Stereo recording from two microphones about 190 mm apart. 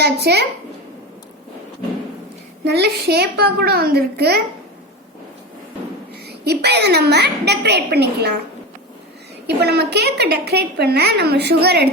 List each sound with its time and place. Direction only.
0.0 s a woman's voice: 60° right (ahead or behind)
2.6 s a woman's voice: 60° right (ahead or behind)
6.2 s a woman's voice: 60° right (ahead or behind)
9.5 s a woman's voice: 60° right (ahead or behind)